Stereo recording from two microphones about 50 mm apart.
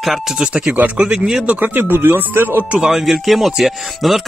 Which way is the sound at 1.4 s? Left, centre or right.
Right.